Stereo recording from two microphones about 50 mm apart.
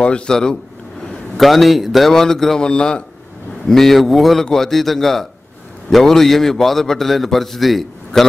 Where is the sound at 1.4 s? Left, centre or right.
Centre.